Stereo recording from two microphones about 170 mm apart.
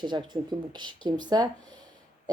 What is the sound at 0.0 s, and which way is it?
Speech, 25° right (ahead or behind).